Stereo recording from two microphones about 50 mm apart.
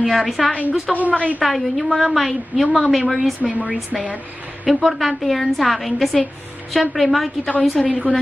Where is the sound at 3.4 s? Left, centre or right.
Centre.